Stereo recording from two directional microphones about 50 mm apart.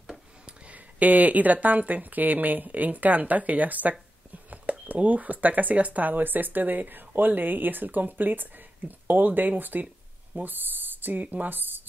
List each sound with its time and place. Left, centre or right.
0.5 s speech: right